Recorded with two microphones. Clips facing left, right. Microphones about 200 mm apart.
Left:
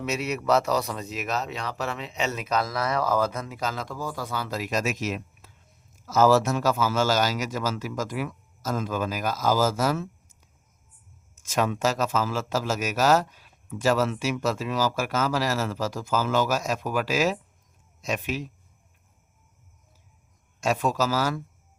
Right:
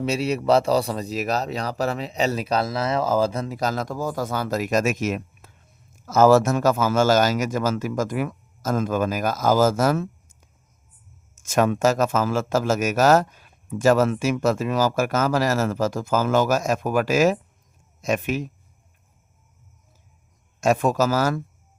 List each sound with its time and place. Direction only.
0.0 s speech: 30° right (ahead or behind); by 18.5 s 50° right (ahead or behind)
20.6 s speech: 50° right (ahead or behind)